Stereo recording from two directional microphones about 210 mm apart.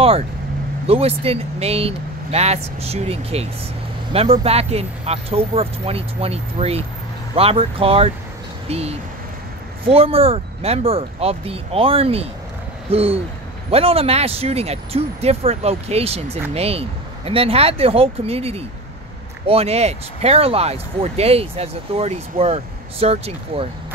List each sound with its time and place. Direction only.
0.8 s speech: 30° right (ahead or behind)